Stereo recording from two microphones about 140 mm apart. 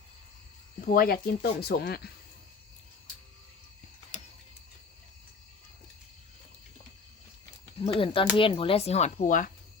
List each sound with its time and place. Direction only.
0.9 s speech: 90° left
7.8 s speech: 40° left (ahead or behind); by 9.5 s 70° left (ahead or behind)